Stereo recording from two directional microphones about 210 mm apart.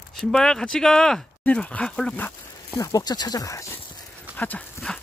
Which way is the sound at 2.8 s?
15° left (ahead or behind).